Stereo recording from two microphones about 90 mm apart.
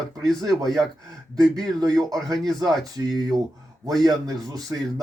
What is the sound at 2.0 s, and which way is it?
Speech, 40° right (ahead or behind).